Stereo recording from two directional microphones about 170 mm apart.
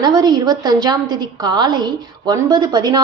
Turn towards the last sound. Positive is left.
turn(degrees=-25)  # may be behind; listen again after turning